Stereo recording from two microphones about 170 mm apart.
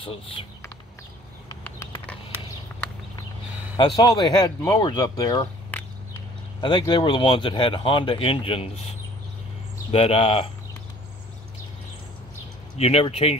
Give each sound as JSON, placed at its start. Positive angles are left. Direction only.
{"t": 0.0, "sound": "speech", "side_deg": 30}
{"t": 3.7, "sound": "speech", "side_deg": 25}
{"t": 5.7, "sound": "a sound", "side_deg": 5}
{"t": 6.6, "sound": "speech", "side_deg": 25}
{"t": 12.7, "sound": "speech", "side_deg": 40}